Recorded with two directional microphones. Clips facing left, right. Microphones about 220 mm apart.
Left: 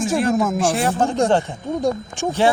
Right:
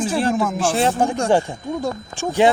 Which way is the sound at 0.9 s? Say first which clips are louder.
Even; 15° right (ahead or behind).